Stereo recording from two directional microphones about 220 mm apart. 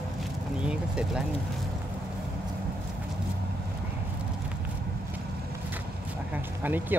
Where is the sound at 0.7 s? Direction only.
5° right (ahead or behind).